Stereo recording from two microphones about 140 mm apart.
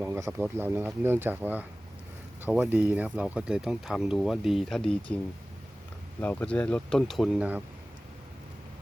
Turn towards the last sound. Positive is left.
turn(degrees=-10)  # may be behind; listen again after turning